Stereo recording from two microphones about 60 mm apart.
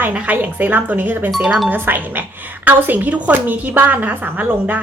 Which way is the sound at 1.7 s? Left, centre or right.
Right.